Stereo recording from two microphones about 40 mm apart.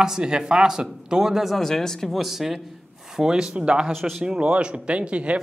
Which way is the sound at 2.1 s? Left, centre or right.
Centre.